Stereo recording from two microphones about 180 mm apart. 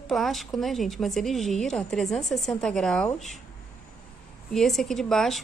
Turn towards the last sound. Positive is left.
turn(degrees=0)  # may be behind; listen again after turning